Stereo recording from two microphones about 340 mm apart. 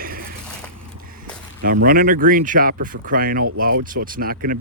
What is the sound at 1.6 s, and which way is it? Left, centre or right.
Speech, right.